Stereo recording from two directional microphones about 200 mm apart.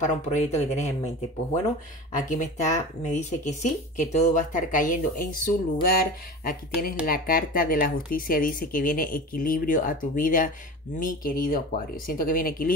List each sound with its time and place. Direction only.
0.0 s speech: 35° left (ahead or behind)